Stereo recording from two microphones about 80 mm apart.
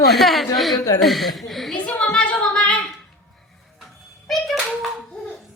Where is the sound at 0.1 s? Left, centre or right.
Centre.